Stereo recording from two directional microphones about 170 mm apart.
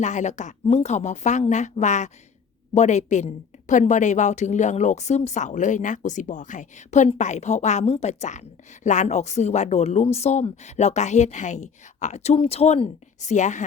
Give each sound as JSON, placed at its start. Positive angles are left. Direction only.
{"t": 0.0, "sound": "a woman's voice", "side_deg": 45}